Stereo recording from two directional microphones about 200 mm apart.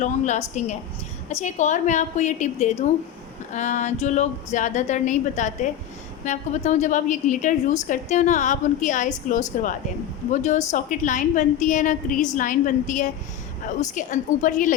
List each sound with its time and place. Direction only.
0.0 s a woman's voice: 35° left (ahead or behind)